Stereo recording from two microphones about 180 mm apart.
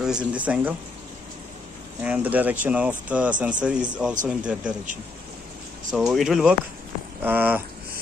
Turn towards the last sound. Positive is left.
turn(degrees=-10)  # may be behind; listen again after turning